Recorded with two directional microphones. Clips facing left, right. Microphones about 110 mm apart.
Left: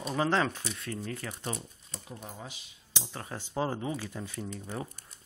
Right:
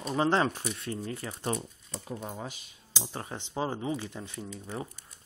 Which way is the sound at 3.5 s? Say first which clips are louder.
Even; 5° right (ahead or behind).